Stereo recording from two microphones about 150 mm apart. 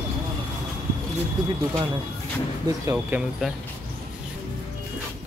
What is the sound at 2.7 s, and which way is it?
Speech, 25° right (ahead or behind).